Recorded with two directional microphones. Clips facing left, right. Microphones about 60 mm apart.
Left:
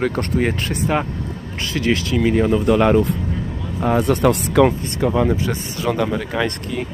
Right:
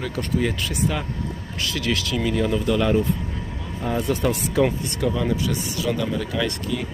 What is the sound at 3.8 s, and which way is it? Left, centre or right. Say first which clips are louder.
Speech: left 7 dB; left.